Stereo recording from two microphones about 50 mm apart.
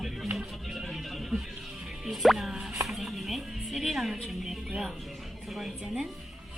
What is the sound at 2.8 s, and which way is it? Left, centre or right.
Music, centre.